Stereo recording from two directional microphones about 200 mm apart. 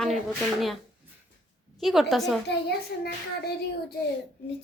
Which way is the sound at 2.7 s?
55° left (ahead or behind).